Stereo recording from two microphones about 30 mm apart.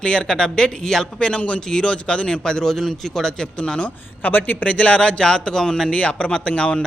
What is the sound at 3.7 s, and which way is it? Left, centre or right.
Speech, left.